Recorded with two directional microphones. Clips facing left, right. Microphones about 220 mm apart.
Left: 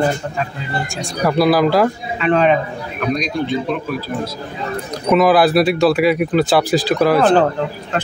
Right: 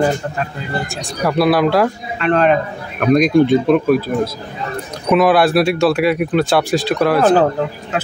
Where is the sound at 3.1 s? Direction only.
50° right (ahead or behind).